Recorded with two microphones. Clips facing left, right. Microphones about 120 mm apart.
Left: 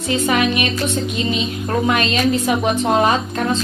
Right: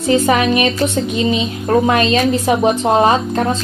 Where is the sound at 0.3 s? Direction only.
30° right (ahead or behind).